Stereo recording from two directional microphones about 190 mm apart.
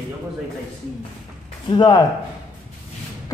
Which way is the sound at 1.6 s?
25° left (ahead or behind).